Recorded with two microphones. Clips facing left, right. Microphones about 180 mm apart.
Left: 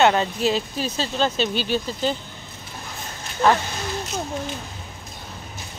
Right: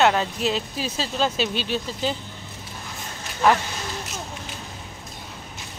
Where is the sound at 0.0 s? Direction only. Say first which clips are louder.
Left 2 dB; centre (ahead or behind).